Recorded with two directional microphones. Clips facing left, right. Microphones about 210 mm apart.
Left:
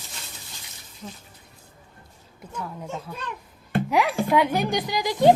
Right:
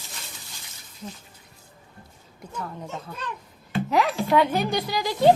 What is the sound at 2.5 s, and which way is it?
A woman's voice, 5° left (ahead or behind).